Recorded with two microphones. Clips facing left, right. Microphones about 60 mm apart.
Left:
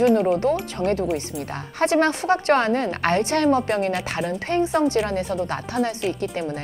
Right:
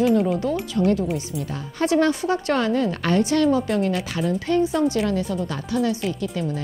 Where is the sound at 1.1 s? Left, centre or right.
Left.